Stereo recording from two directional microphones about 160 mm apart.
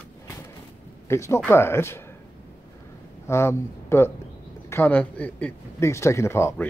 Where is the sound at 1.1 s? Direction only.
15° left (ahead or behind).